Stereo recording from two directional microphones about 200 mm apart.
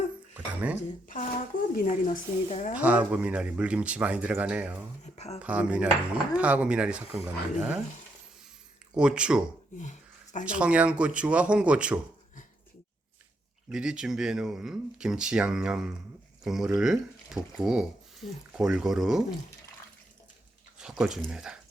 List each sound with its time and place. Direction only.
0.3 s speech: 5° right (ahead or behind)
1.7 s a woman's voice: 40° left (ahead or behind)
2.7 s speech: 5° right (ahead or behind)
5.1 s a sound: 30° left (ahead or behind)
5.4 s speech: 5° right (ahead or behind)
9.0 s speech: 5° right (ahead or behind)
9.7 s a sound: 40° left (ahead or behind)
10.4 s speech: 5° right (ahead or behind)
13.7 s speech: 5° right (ahead or behind)
20.7 s speech: 5° right (ahead or behind)